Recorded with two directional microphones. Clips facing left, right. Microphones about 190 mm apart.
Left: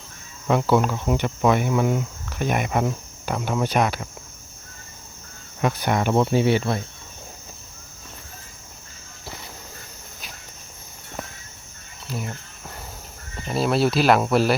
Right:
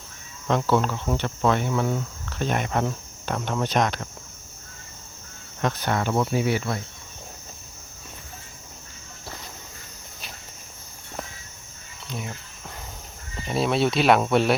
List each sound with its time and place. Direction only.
0.4 s speech: 10° left (ahead or behind)
5.5 s speech: 10° left (ahead or behind); by 6.8 s 25° left (ahead or behind)
12.0 s cricket: centre (ahead or behind)
13.5 s speech: centre (ahead or behind)